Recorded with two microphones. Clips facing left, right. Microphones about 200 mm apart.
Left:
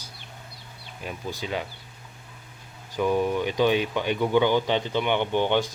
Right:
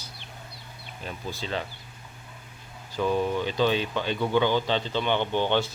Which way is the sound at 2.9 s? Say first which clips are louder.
Left 2 dB; 15° left (ahead or behind).